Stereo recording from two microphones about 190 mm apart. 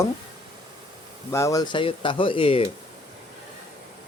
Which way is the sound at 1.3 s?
15° left (ahead or behind).